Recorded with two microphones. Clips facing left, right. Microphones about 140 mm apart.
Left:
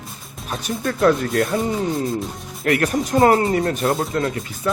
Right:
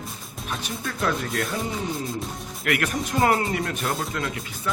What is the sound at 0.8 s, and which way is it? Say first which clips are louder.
Speech: left 11 dB; 45° left (ahead or behind).